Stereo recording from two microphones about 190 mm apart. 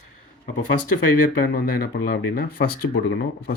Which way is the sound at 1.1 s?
50° left (ahead or behind).